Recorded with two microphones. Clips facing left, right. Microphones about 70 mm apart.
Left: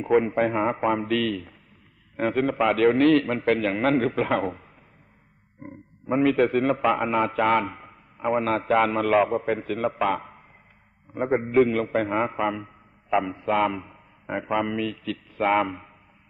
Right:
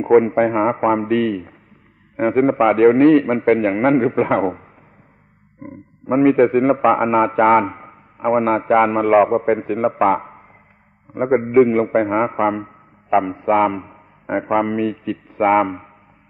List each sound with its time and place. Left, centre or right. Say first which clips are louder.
0.0 s a man's voice: right 8 dB; right
11.1 s a man's voice: right 7 dB; right
12.3 s a sound: right 8 dB; right
13.2 s a man's voice: right 7 dB; right